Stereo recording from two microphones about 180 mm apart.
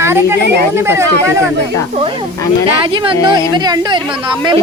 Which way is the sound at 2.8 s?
30° right (ahead or behind).